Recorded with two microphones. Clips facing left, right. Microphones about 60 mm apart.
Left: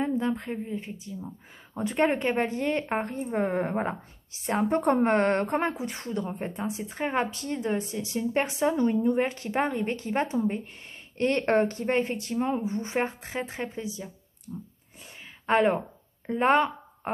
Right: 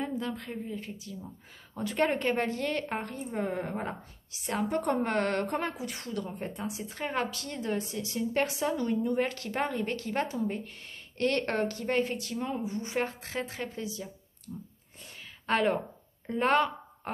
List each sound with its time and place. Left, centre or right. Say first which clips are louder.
0.0 s a woman's voice: left 6 dB; left